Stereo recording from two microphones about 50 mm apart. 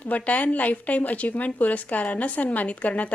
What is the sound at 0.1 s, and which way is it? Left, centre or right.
A woman's voice, left.